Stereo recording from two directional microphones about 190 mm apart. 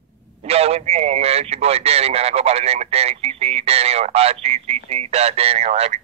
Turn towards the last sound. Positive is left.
turn(degrees=-35)  # may be behind; listen again after turning